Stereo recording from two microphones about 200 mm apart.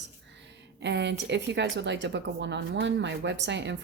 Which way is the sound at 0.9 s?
60° right (ahead or behind).